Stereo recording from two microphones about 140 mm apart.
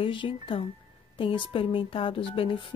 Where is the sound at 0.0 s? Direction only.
40° left (ahead or behind).